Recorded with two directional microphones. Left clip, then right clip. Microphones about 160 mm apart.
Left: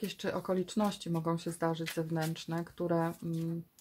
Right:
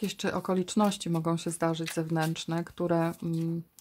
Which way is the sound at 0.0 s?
45° right (ahead or behind).